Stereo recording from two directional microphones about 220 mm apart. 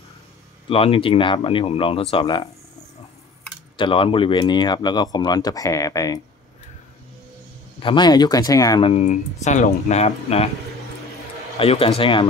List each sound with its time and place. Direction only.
0.7 s speech: 25° left (ahead or behind)
3.7 s speech: 20° left (ahead or behind)
7.8 s speech: 20° left (ahead or behind)
8.9 s speech: 30° left (ahead or behind)
11.5 s a man's voice: 25° left (ahead or behind)